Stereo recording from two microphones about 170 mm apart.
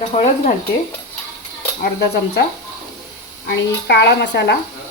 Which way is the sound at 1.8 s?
70° left (ahead or behind).